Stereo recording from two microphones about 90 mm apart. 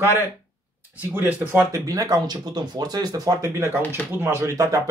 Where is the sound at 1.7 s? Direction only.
40° right (ahead or behind).